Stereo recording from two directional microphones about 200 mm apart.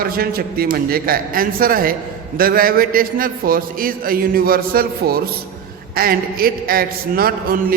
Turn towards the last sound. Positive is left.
turn(degrees=-45)  # may be behind; listen again after turning